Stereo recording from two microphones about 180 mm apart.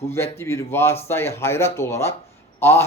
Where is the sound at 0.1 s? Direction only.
15° left (ahead or behind).